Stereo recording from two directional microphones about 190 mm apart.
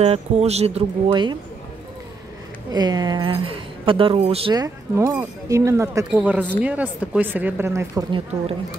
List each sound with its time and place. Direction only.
0.0 s speech: 35° right (ahead or behind)
2.7 s speech: 20° right (ahead or behind)